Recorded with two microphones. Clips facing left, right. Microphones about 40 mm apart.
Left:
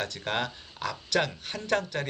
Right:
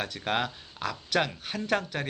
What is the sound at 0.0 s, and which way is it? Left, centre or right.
Speech, centre.